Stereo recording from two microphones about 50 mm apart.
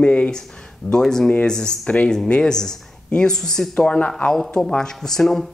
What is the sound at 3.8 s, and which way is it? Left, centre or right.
A woman's voice, left.